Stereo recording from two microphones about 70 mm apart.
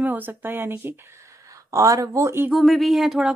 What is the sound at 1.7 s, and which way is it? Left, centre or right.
Speech, right.